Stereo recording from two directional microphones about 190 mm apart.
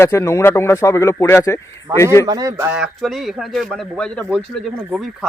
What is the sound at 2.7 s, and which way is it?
Speech, 5° right (ahead or behind).